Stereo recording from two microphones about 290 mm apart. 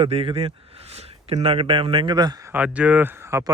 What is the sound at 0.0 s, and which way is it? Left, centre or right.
A man's voice, centre.